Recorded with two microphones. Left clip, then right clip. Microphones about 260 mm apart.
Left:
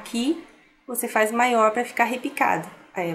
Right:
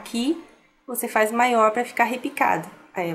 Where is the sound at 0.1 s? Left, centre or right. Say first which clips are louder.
Even; centre.